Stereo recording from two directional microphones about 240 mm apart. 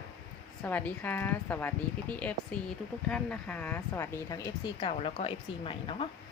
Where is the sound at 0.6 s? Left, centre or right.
Centre.